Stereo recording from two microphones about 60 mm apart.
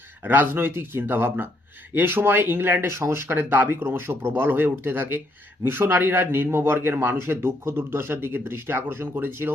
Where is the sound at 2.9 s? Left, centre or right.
Right.